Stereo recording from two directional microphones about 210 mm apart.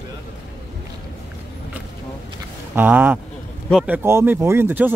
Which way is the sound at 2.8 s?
10° right (ahead or behind).